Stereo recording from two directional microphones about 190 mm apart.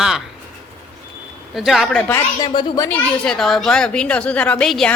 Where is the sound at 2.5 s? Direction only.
20° left (ahead or behind).